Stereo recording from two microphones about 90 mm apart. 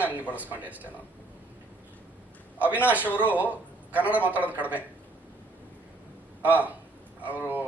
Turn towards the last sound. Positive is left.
turn(degrees=-20)  # may be behind; listen again after turning